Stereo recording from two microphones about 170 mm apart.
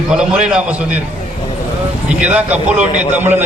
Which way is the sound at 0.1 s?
5° right (ahead or behind).